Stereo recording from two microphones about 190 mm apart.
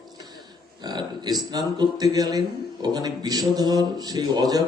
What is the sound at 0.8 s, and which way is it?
A man's voice, 20° right (ahead or behind).